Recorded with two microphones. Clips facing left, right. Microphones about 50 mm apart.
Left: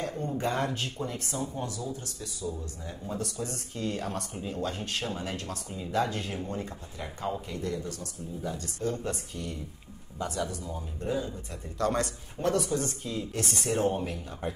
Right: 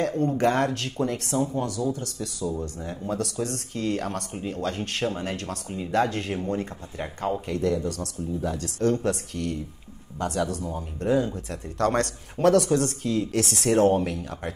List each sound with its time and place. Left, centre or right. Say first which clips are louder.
0.4 s speech: right 5 dB; right
7.4 s speech: right 9 dB; right
10.1 s speech: right 6 dB; right